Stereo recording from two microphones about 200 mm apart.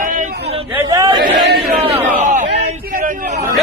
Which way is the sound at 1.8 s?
35° right (ahead or behind).